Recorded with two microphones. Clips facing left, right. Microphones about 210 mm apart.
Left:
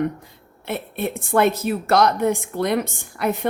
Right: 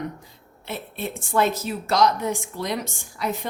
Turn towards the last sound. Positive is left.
turn(degrees=60)  # may be behind; listen again after turning